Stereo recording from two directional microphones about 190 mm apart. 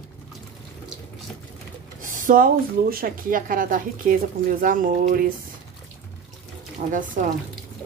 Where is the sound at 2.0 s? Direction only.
45° right (ahead or behind).